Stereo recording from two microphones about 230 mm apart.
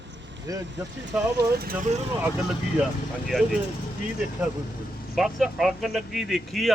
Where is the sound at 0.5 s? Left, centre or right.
Centre.